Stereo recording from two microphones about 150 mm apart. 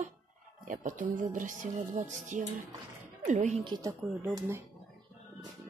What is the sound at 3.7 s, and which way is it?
Speech, 25° right (ahead or behind).